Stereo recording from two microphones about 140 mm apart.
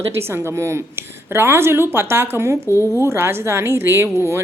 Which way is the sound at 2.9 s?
20° right (ahead or behind).